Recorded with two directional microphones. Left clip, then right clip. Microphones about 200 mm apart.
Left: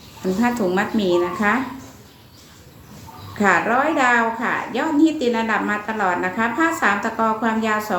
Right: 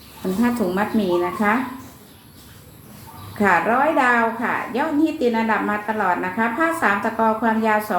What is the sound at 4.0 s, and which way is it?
A woman's voice, 20° left (ahead or behind).